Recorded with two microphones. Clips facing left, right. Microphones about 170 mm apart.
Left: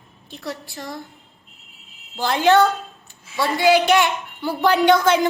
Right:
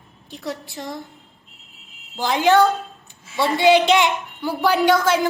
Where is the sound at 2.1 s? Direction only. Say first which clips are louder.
Even; 15° right (ahead or behind).